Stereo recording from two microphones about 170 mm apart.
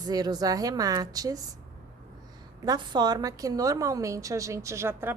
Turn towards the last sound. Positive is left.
turn(degrees=-15)  # may be behind; listen again after turning